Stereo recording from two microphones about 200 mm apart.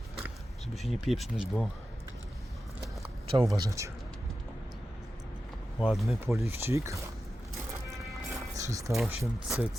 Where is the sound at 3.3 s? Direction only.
25° right (ahead or behind).